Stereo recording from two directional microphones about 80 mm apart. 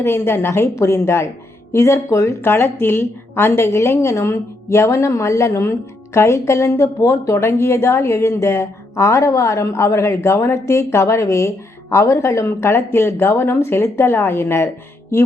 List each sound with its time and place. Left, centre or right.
0.0 s speech: left